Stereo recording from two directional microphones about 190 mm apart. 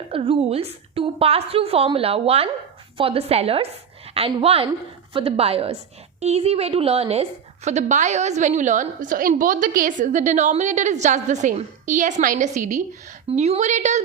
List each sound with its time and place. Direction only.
0.1 s a woman's voice: 30° right (ahead or behind)